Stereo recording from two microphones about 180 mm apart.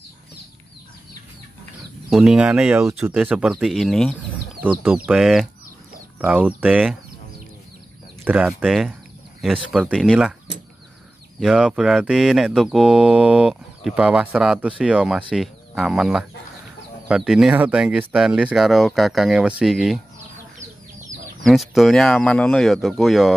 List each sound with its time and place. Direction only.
2.0 s speech: 5° right (ahead or behind)
8.2 s speech: 5° right (ahead or behind)
11.3 s speech: 5° right (ahead or behind)
21.4 s speech: centre (ahead or behind)